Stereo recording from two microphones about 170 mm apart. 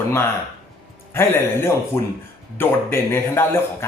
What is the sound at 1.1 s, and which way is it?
A man's voice, 15° left (ahead or behind).